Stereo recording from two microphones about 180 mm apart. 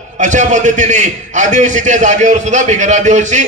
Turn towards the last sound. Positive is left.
turn(degrees=-40)  # may be behind; listen again after turning